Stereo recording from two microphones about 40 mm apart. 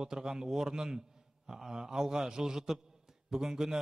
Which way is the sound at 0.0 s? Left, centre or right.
Centre.